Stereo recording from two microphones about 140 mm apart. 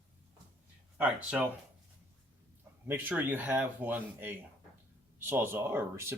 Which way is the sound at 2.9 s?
15° right (ahead or behind).